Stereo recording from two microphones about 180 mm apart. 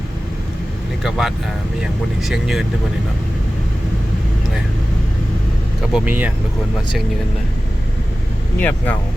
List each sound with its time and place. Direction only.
1.0 s speech: centre (ahead or behind)
5.9 s speech: 10° right (ahead or behind)
8.5 s speech: 10° left (ahead or behind)